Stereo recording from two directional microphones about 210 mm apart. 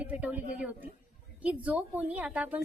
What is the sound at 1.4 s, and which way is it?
A woman's voice, 5° right (ahead or behind).